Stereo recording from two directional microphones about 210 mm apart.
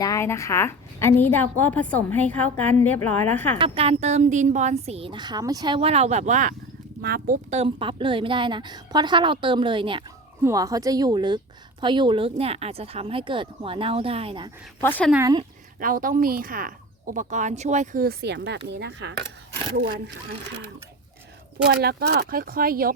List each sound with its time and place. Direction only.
0.0 s a woman's voice: 15° left (ahead or behind)
3.6 s a woman's voice: 30° right (ahead or behind)
7.0 s speech: 45° right (ahead or behind)
7.5 s a woman's voice: 25° right (ahead or behind)
14.8 s a woman's voice: 10° left (ahead or behind)
15.1 s a woman's voice: 15° right (ahead or behind)
15.8 s speech: 40° right (ahead or behind)
21.7 s speech: 50° right (ahead or behind)